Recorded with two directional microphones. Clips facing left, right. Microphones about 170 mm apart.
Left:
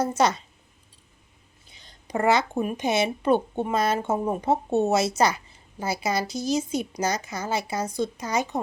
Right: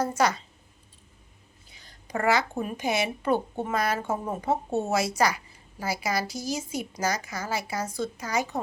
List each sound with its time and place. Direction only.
0.0 s speech: 25° left (ahead or behind)
1.7 s speech: 20° left (ahead or behind)